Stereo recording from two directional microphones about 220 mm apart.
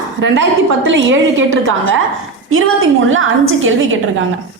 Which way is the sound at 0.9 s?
60° right (ahead or behind).